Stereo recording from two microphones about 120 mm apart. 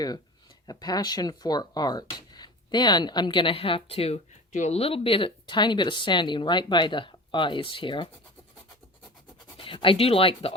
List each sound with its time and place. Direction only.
0.7 s speech: 35° left (ahead or behind)
9.6 s speech: 50° left (ahead or behind)